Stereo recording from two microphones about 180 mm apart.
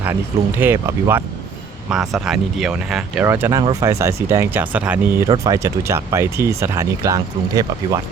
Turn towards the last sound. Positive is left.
turn(degrees=-20)  # may be behind; listen again after turning